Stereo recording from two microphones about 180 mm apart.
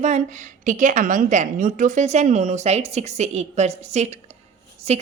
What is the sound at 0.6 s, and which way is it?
A woman's voice, 45° right (ahead or behind).